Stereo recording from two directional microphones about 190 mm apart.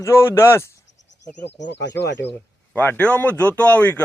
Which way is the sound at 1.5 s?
65° left (ahead or behind).